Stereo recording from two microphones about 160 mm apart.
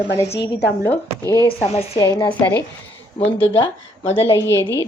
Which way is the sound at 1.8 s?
30° left (ahead or behind).